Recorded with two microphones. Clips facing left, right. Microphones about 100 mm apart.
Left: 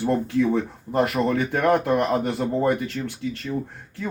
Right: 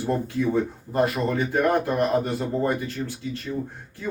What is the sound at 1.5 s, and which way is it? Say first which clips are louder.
Speech: left 2 dB; 60° left (ahead or behind).